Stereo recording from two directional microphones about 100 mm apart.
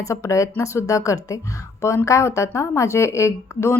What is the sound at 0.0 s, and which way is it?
Speech, 30° left (ahead or behind).